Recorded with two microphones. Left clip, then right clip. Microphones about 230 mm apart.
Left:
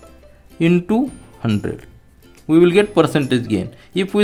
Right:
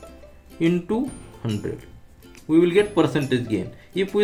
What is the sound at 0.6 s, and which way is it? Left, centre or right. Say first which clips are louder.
Speech: left 5 dB; left.